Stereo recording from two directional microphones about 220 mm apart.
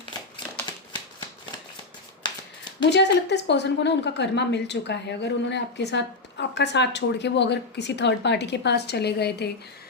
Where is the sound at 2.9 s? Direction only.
50° left (ahead or behind).